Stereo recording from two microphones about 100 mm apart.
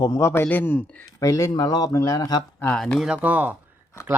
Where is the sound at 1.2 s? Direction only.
35° left (ahead or behind).